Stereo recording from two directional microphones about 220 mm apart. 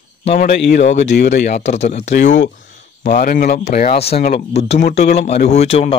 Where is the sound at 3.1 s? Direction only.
40° left (ahead or behind).